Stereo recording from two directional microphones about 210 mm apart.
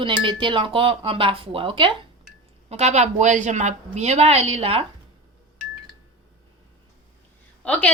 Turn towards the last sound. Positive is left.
turn(degrees=5)  # may be behind; listen again after turning